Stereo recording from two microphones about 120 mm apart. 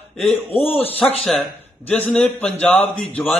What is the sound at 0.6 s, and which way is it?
Speech, 55° left (ahead or behind).